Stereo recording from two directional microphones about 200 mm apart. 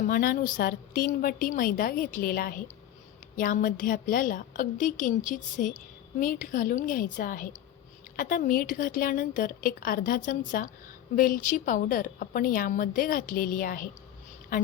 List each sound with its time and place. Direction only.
0.1 s a woman's voice: 45° left (ahead or behind)